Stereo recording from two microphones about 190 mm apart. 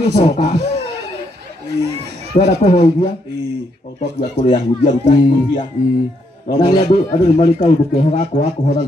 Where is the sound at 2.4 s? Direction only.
35° left (ahead or behind).